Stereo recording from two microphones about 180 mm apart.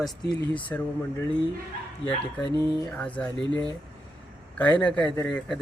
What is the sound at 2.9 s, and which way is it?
Speech, 10° left (ahead or behind).